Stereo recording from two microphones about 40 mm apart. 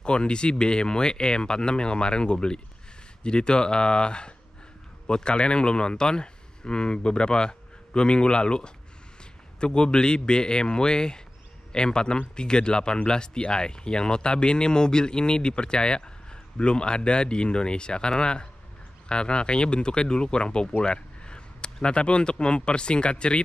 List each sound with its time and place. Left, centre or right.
0.0 s speech: left
20.8 s a sound: left
21.8 s speech: left